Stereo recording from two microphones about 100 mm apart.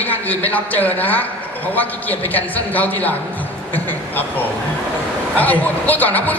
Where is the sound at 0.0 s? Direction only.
15° left (ahead or behind).